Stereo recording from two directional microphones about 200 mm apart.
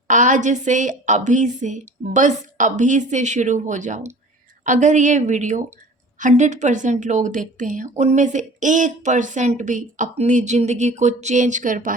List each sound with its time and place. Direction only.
0.1 s a woman's voice: 40° right (ahead or behind)